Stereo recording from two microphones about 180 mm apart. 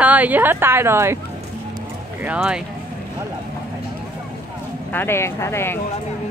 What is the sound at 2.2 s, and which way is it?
Speech, 5° right (ahead or behind).